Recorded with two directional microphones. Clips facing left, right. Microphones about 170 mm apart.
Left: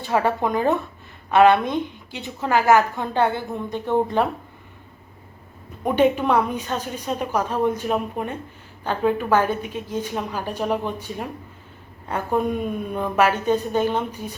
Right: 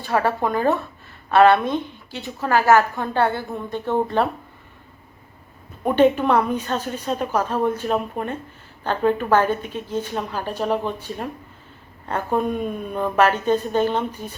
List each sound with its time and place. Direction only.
0.0 s a woman's voice: 20° left (ahead or behind)
5.8 s a woman's voice: 10° left (ahead or behind)